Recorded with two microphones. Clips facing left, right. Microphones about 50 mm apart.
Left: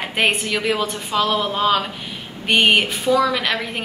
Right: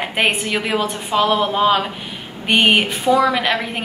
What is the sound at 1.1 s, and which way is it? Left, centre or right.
A woman's voice, right.